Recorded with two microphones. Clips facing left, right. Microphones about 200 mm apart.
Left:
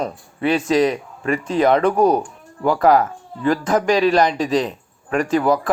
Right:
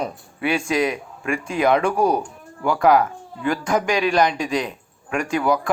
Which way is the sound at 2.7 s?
Centre (ahead or behind).